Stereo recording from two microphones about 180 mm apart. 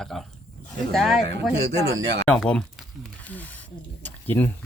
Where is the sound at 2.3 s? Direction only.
5° left (ahead or behind).